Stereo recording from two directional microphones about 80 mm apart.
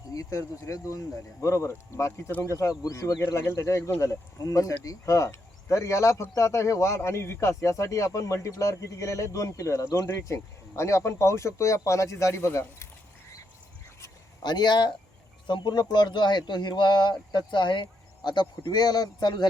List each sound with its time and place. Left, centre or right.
0.1 s speech: left
3.2 s speech: left
14.4 s speech: left